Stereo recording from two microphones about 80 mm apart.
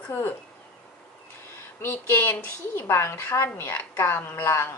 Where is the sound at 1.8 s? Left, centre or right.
Left.